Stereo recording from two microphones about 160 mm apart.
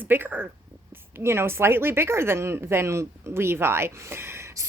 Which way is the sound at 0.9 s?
15° right (ahead or behind).